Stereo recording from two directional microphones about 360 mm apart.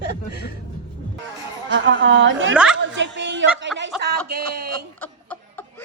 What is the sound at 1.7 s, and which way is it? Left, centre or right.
Speech, right.